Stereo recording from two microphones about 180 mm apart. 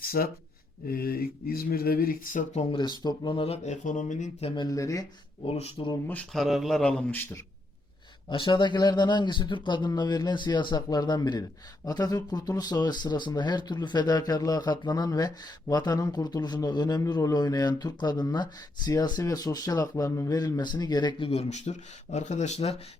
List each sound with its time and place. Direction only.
0.0 s a sound: 55° left (ahead or behind)
0.9 s speech: 55° left (ahead or behind)
2.7 s speech: 25° left (ahead or behind)
5.5 s speech: 35° left (ahead or behind)
6.1 s speech: 5° left (ahead or behind)
8.3 s speech: 25° left (ahead or behind)